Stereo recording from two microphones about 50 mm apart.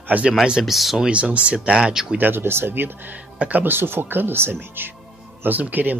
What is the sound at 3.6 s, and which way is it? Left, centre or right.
Speech, right.